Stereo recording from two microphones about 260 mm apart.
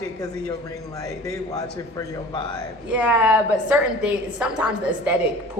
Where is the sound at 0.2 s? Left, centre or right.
Centre.